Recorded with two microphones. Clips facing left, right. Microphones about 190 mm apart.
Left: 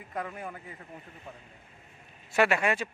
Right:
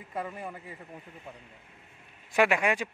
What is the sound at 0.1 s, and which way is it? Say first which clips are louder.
Speech: right 1 dB; 5° right (ahead or behind).